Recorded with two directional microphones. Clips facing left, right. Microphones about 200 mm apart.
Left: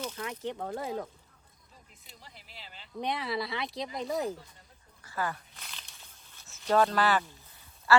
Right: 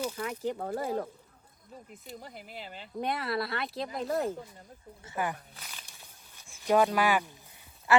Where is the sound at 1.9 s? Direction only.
50° right (ahead or behind).